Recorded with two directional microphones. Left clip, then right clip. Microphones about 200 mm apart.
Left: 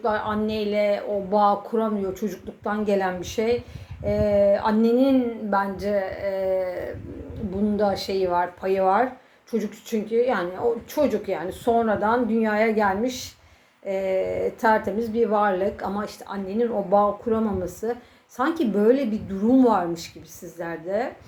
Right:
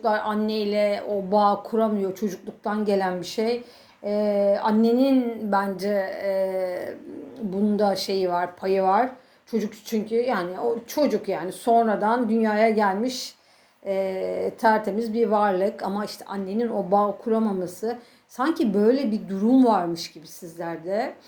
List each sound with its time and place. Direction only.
0.0 s a woman's voice: 35° right (ahead or behind)